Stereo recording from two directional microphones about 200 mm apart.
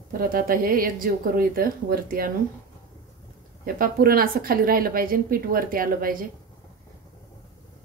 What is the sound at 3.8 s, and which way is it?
A woman's voice, 50° right (ahead or behind).